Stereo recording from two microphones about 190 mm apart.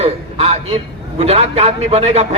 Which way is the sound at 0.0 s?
30° right (ahead or behind).